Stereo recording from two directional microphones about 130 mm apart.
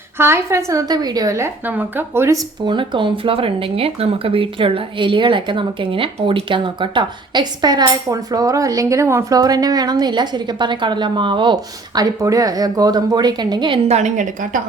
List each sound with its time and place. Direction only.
0.2 s a woman's voice: 20° right (ahead or behind)
2.6 s speech: 40° right (ahead or behind)
13.8 s a woman's voice: 60° right (ahead or behind)